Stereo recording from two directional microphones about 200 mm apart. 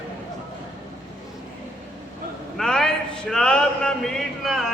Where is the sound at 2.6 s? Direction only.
5° left (ahead or behind).